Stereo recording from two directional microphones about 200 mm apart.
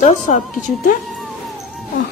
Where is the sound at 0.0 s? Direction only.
35° left (ahead or behind).